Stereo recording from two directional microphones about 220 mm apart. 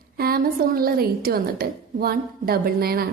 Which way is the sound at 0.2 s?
45° right (ahead or behind).